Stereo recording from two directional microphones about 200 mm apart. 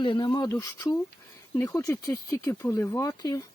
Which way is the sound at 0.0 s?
25° left (ahead or behind).